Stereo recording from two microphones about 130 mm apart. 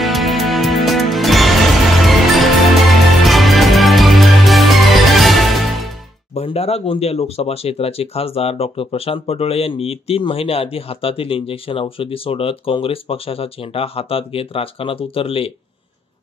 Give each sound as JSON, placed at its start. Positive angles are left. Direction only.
{"t": 0.0, "sound": "music", "side_deg": 0}
{"t": 6.3, "sound": "speech", "side_deg": 50}